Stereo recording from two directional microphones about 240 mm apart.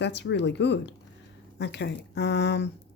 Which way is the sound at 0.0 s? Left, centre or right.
Left.